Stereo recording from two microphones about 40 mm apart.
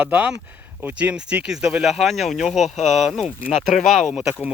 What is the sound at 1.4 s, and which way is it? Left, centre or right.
Speech, right.